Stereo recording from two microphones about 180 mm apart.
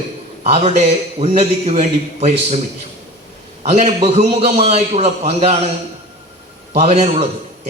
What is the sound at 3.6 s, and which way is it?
A man's voice, 40° right (ahead or behind).